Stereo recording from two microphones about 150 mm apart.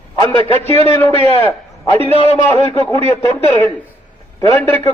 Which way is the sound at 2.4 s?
20° left (ahead or behind).